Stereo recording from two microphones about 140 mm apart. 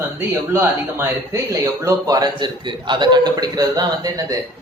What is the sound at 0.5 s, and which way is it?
Speech, 15° right (ahead or behind).